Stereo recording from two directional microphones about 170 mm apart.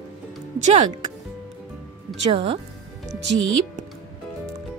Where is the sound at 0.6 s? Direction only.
45° right (ahead or behind).